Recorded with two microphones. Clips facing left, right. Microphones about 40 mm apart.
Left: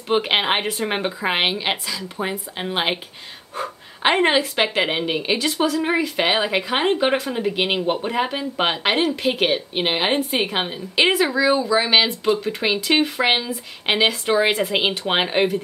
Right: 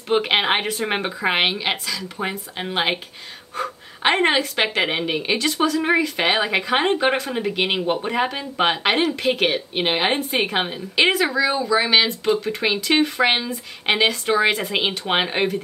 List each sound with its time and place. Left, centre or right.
0.1 s speech: centre
7.5 s speech: centre